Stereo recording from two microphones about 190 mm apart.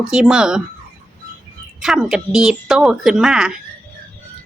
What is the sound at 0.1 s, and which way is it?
Speech, 5° right (ahead or behind).